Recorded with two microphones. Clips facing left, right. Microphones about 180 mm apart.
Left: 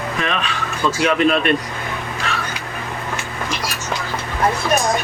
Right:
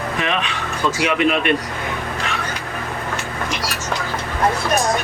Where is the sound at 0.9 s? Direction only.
15° right (ahead or behind).